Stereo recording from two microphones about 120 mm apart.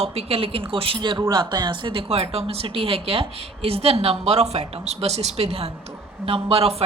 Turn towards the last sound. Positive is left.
turn(degrees=-55)  # may be behind; listen again after turning